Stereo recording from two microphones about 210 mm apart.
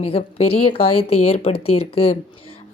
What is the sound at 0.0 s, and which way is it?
Speech, 25° left (ahead or behind).